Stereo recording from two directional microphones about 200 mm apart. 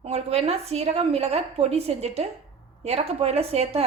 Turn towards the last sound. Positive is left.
turn(degrees=-30)  # may be behind; listen again after turning